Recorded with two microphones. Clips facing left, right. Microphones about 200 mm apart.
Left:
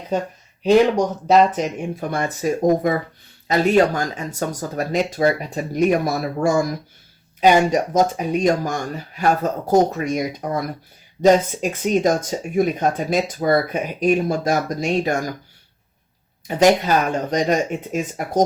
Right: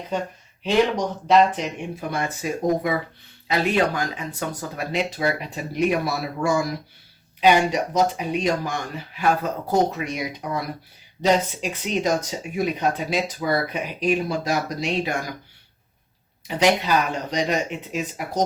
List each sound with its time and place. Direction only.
0.6 s speech: 40° left (ahead or behind)
16.5 s speech: 45° left (ahead or behind)